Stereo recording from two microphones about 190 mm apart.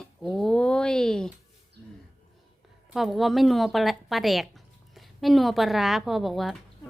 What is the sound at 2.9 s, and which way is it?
A woman's voice, centre (ahead or behind).